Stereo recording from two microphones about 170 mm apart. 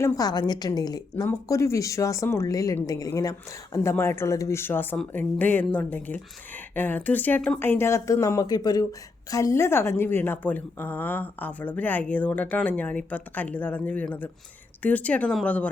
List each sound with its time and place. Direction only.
0.0 s a woman's voice: 20° left (ahead or behind)